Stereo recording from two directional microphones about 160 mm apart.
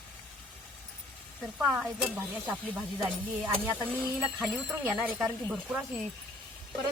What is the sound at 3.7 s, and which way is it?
Speech, 10° right (ahead or behind).